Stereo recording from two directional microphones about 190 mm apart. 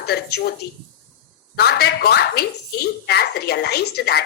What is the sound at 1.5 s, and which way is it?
A woman's voice, 55° left (ahead or behind).